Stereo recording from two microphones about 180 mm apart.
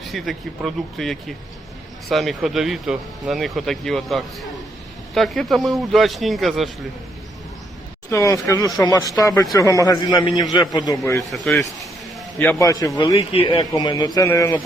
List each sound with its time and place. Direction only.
0.0 s speech: centre (ahead or behind)
8.1 s speech: 15° left (ahead or behind)
11.3 s speech: centre (ahead or behind)
12.4 s speech: 15° left (ahead or behind)
13.3 s speech: 30° left (ahead or behind); by 14.6 s 15° left (ahead or behind)